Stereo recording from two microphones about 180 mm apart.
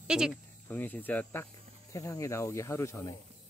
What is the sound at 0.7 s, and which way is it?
Speech, 10° left (ahead or behind).